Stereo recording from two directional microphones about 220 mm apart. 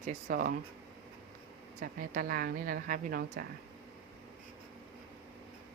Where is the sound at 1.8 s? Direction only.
40° right (ahead or behind).